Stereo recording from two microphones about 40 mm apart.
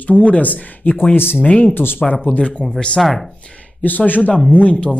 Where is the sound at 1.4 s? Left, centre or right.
Left.